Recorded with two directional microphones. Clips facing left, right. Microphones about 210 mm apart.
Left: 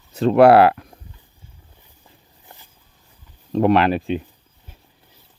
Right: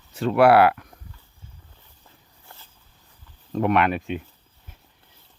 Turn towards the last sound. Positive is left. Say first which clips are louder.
# left 5 dB
turn(degrees=30)  # may be behind; listen again after turning